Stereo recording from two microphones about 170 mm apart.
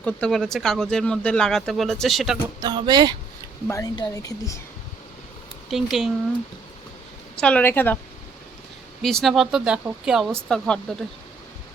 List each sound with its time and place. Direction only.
0.0 s speech: 5° left (ahead or behind)
2.6 s speech: 25° right (ahead or behind)
3.7 s speech: 20° left (ahead or behind)
5.7 s speech: centre (ahead or behind)
7.3 s speech: 5° left (ahead or behind)
9.0 s speech: centre (ahead or behind)